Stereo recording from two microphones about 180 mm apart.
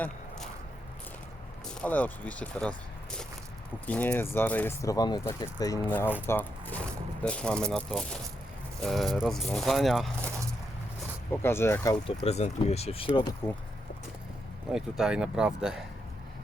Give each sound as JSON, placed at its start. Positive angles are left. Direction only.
{"t": 1.6, "sound": "speech", "side_deg": 10}
{"t": 5.9, "sound": "speech", "side_deg": 10}
{"t": 11.3, "sound": "speech", "side_deg": 15}
{"t": 12.2, "sound": "speech", "side_deg": 35}
{"t": 14.7, "sound": "speech", "side_deg": -5}